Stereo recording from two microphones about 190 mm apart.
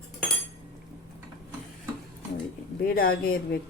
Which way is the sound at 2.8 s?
50° left (ahead or behind).